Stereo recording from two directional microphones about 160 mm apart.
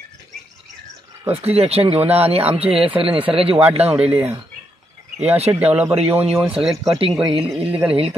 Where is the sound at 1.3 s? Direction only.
40° right (ahead or behind).